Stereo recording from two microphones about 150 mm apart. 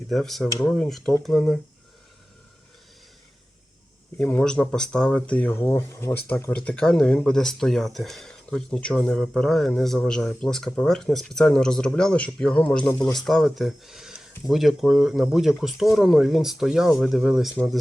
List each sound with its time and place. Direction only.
0.1 s speech: centre (ahead or behind)
4.3 s speech: 10° left (ahead or behind)
12.9 s a man's voice: 25° left (ahead or behind)
13.1 s speech: centre (ahead or behind)